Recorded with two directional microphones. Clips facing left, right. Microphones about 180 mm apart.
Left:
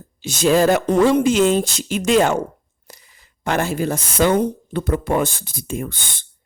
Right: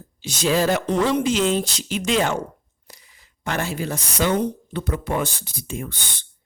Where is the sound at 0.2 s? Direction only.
50° left (ahead or behind).